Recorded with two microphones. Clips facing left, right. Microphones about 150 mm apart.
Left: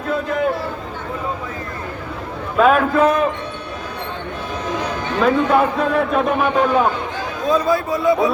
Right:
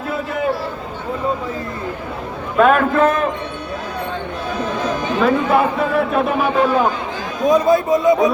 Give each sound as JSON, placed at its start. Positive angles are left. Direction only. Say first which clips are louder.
{"t": 0.1, "sound": "a sound", "louder": "left 2 dB", "side_deg": -5}
{"t": 2.6, "sound": "a man's voice", "louder": "right 1 dB", "side_deg": 0}
{"t": 5.2, "sound": "a man's voice", "louder": "left 1 dB", "side_deg": -5}
{"t": 7.4, "sound": "speech", "louder": "right 4 dB", "side_deg": -20}